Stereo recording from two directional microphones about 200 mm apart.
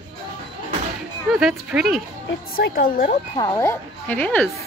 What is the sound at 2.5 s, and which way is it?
Speech, 45° left (ahead or behind).